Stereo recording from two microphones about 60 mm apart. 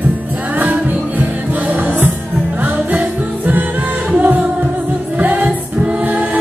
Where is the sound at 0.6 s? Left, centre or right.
Right.